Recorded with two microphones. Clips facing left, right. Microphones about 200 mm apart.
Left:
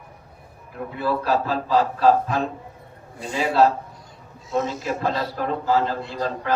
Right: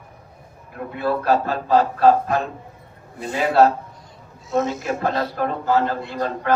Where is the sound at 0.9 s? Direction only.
55° right (ahead or behind).